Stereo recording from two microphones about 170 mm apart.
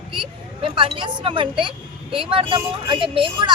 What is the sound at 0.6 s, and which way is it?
A woman's voice, 30° right (ahead or behind).